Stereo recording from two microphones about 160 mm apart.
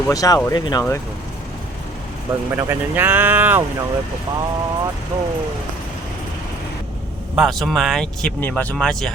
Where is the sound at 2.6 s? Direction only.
15° right (ahead or behind).